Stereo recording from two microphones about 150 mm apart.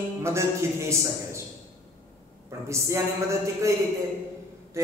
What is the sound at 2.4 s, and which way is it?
Speech, 20° right (ahead or behind).